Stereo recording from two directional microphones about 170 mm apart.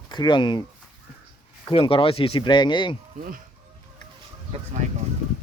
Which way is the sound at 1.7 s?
35° left (ahead or behind).